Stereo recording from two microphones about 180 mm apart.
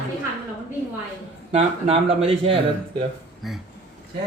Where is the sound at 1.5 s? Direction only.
35° right (ahead or behind).